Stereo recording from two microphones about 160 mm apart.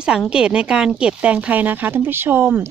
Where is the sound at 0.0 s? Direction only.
5° right (ahead or behind).